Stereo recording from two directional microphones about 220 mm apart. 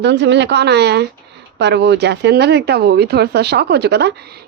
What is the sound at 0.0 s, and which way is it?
A woman's voice, 50° right (ahead or behind).